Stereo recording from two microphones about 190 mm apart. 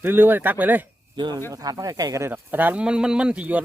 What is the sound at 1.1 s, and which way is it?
Speech, 25° right (ahead or behind).